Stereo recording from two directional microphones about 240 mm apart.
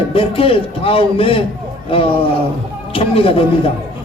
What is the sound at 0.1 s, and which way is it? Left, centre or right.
A man's voice, left.